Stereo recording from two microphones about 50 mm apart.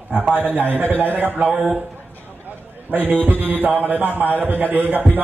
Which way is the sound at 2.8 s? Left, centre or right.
Right.